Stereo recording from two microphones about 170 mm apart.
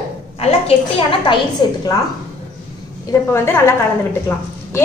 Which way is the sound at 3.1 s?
15° left (ahead or behind).